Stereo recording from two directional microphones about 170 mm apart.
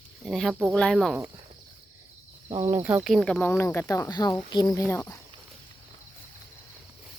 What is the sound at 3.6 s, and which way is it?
Speech, 15° left (ahead or behind).